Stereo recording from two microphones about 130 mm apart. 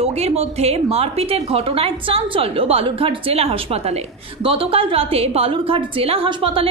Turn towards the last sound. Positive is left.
turn(degrees=-45)  # may be behind; listen again after turning